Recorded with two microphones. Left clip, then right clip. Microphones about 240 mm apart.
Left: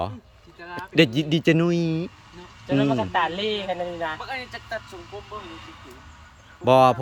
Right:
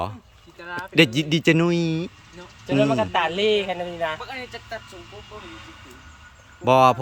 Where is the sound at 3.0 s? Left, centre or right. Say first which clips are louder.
Right 2 dB; right.